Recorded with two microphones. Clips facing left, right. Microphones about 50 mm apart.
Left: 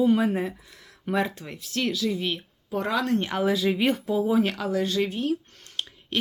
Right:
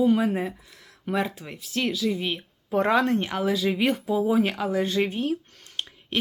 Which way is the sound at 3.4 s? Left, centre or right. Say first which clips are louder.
Left 2 dB; centre.